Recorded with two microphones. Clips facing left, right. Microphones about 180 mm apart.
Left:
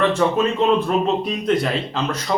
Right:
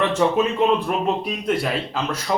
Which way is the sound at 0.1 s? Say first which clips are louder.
Left 1 dB; 20° right (ahead or behind).